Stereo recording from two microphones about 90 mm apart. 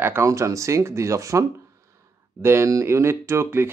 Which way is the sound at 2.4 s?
30° right (ahead or behind).